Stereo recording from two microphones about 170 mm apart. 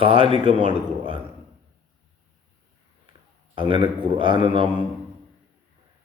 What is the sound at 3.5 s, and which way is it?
A man's voice, 30° right (ahead or behind).